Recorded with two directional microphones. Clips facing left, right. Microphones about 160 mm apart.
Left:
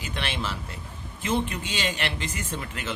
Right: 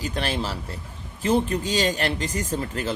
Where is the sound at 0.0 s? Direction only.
40° right (ahead or behind).